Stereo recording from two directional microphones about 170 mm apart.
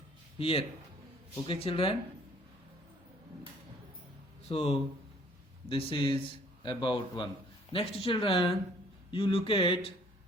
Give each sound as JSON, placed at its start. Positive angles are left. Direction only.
{"t": 0.3, "sound": "speech", "side_deg": 35}
{"t": 4.4, "sound": "speech", "side_deg": 35}